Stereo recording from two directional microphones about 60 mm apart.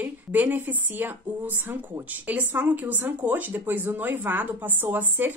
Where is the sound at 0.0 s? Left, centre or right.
Right.